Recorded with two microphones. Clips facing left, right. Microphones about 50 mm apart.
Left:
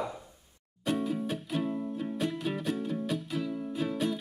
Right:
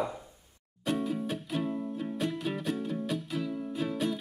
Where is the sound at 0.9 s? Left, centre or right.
Centre.